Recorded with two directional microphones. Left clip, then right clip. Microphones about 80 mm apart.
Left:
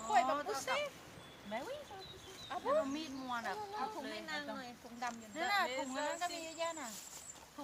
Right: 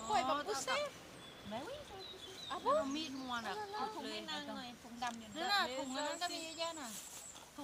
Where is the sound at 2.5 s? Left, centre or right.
Left.